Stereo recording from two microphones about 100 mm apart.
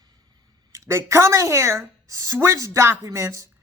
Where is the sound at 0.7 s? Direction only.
30° right (ahead or behind).